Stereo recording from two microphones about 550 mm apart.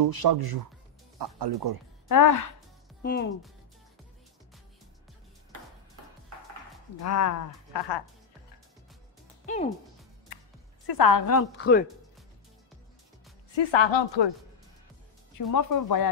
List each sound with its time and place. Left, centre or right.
0.0 s speech: right
2.0 s speech: left
3.0 s speech: centre
7.0 s a woman's voice: left
9.5 s speech: centre
10.9 s a woman's voice: left; by 11.8 s centre
13.6 s speech: left
15.5 s speech: left